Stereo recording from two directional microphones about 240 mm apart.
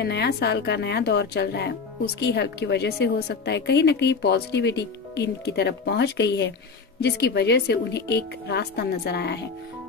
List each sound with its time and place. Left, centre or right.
0.0 s a woman's voice: left